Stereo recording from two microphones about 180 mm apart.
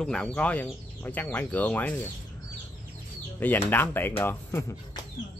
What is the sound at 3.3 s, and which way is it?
Speech, 10° left (ahead or behind).